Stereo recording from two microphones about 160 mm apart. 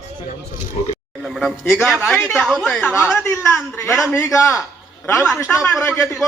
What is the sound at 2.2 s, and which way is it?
Speech, 15° left (ahead or behind).